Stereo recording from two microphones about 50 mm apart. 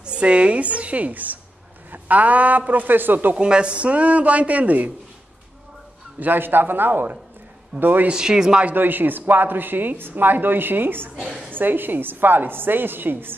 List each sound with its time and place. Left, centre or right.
0.0 s a man's voice: right
3.3 s a man's voice: right
6.1 s a woman's voice: right
8.1 s speech: centre
8.7 s a woman's voice: right